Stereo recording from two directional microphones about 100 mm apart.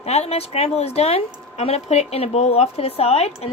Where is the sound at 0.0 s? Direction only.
90° left.